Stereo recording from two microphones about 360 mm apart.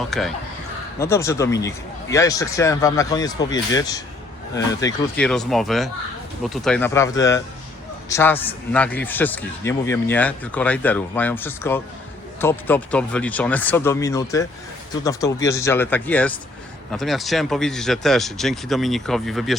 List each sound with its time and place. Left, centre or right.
0.1 s a man's voice: centre